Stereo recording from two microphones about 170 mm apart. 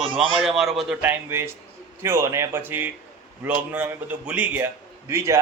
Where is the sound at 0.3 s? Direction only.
Centre (ahead or behind).